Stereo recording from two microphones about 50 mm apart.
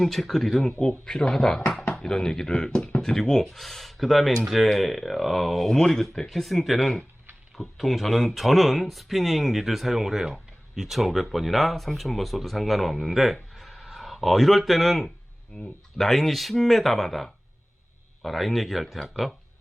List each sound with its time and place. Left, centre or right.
0.0 s speech: centre